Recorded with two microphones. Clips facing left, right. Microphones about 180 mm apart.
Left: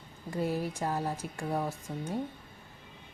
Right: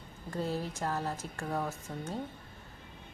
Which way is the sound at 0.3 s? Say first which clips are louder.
Left 3 dB; 10° left (ahead or behind).